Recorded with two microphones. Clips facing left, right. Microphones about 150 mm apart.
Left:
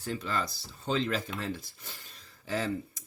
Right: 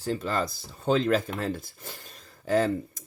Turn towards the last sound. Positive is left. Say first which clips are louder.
# right 8 dB
turn(degrees=-50)  # may be behind; listen again after turning